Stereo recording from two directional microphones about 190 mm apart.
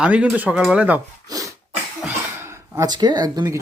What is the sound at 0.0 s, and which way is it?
Speech, 5° right (ahead or behind).